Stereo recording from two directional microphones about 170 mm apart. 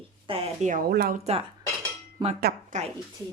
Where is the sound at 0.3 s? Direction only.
35° right (ahead or behind); by 1.2 s 65° right (ahead or behind).